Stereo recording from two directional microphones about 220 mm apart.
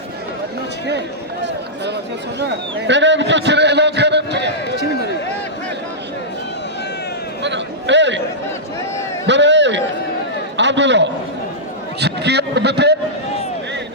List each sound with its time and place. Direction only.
0.9 s a man's voice: 50° right (ahead or behind)
7.4 s a sound: 55° right (ahead or behind)
9.2 s a man's voice: 55° right (ahead or behind)